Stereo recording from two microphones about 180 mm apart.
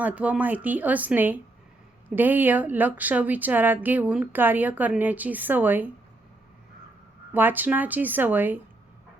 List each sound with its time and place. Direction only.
0.0 s a woman's voice: 10° right (ahead or behind)
7.3 s a woman's voice: 10° right (ahead or behind)